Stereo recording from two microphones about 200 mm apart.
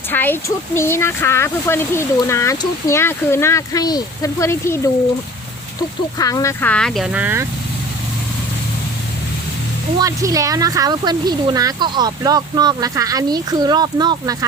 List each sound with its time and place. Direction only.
0.1 s speech: 10° left (ahead or behind)
6.1 s speech: 15° left (ahead or behind); by 7.4 s 10° right (ahead or behind)
10.0 s speech: 15° right (ahead or behind)